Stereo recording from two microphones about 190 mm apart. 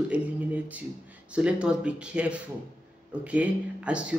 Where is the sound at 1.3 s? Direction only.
5° right (ahead or behind).